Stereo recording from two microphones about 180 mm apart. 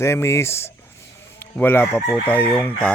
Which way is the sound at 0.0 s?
15° left (ahead or behind).